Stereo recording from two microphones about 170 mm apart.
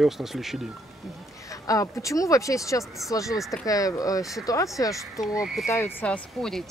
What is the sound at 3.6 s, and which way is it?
Speech, 20° left (ahead or behind).